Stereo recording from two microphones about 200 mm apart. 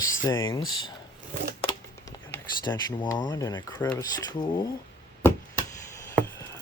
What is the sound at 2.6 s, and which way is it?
Speech, 20° left (ahead or behind).